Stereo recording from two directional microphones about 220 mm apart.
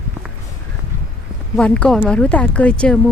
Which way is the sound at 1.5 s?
5° left (ahead or behind).